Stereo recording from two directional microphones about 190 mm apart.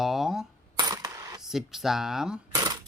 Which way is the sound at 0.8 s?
20° right (ahead or behind).